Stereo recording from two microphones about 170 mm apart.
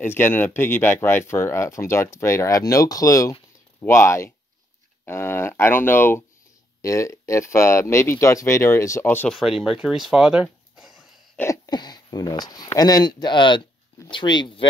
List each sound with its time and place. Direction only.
0.0 s speech: 15° left (ahead or behind)
9.4 s speech: centre (ahead or behind)
11.3 s speech: 20° left (ahead or behind)